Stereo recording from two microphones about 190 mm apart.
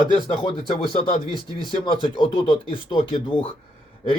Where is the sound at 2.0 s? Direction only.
25° left (ahead or behind).